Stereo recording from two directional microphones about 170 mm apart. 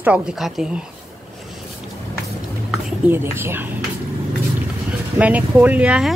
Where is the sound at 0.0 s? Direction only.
5° right (ahead or behind).